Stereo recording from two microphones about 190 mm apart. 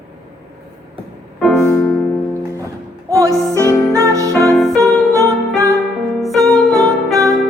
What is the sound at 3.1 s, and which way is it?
Music, 15° right (ahead or behind).